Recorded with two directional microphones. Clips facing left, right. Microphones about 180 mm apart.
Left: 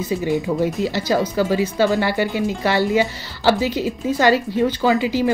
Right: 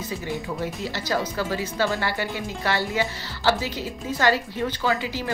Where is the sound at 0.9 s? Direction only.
15° left (ahead or behind).